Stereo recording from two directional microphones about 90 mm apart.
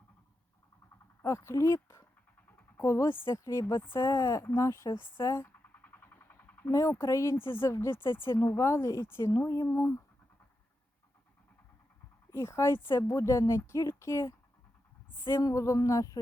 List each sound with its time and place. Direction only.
1.2 s speech: 30° left (ahead or behind)
6.7 s speech: 35° left (ahead or behind)
12.3 s speech: 30° left (ahead or behind)